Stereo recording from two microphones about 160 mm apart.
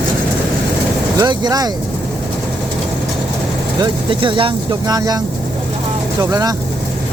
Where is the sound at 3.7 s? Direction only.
30° right (ahead or behind).